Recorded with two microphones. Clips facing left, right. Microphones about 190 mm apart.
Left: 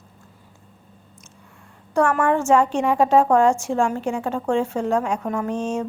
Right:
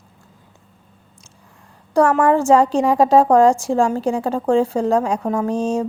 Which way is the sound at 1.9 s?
35° right (ahead or behind).